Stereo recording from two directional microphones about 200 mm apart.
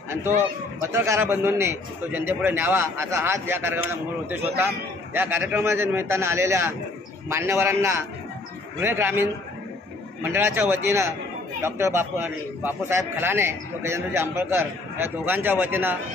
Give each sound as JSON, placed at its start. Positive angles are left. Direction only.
{"t": 0.9, "sound": "a man's voice", "side_deg": -15}
{"t": 5.1, "sound": "a man's voice", "side_deg": -10}